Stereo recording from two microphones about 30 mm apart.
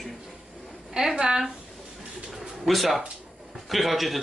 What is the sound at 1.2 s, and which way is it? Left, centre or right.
Speech, centre.